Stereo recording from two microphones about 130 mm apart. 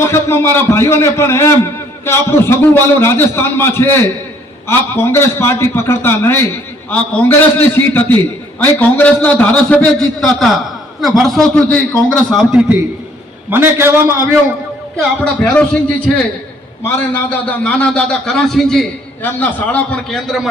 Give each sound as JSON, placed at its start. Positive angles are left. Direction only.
{"t": 0.0, "sound": "a man's voice", "side_deg": 20}
{"t": 12.5, "sound": "a man's voice", "side_deg": -10}
{"t": 14.9, "sound": "a man's voice", "side_deg": 10}
{"t": 17.2, "sound": "a man's voice", "side_deg": 10}
{"t": 19.2, "sound": "a man's voice", "side_deg": 15}